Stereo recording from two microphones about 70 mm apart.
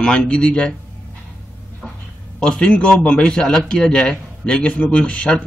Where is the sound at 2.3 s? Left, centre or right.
Centre.